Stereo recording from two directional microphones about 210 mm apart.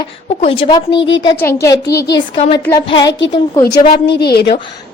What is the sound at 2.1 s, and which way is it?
Speech, 25° left (ahead or behind).